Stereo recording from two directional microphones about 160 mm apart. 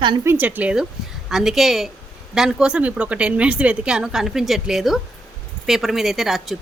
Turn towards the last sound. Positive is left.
turn(degrees=0)  # may be behind; listen again after turning